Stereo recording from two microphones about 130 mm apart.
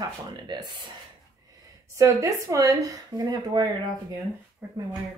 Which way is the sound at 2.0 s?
25° right (ahead or behind).